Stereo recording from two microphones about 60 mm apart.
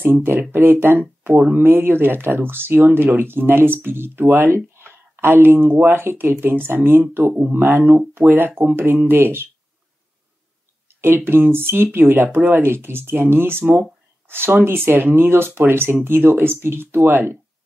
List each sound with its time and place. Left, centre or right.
0.0 s speech: right
4.7 s a sound: right
5.9 s speech: right
11.2 s speech: right